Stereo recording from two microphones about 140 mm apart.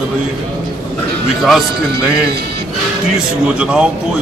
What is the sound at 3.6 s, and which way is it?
Speech, 5° right (ahead or behind).